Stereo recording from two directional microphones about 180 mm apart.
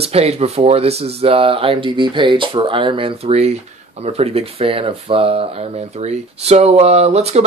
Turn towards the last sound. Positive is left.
turn(degrees=-35)  # may be behind; listen again after turning